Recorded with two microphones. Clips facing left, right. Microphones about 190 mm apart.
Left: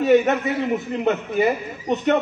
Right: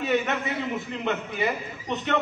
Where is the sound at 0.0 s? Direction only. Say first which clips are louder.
Left 9 dB; 40° left (ahead or behind).